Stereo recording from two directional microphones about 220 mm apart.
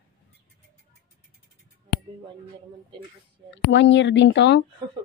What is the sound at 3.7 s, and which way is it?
Speech, 55° left (ahead or behind).